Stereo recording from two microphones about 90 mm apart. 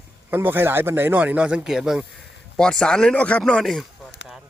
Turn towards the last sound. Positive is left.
turn(degrees=5)  # may be behind; listen again after turning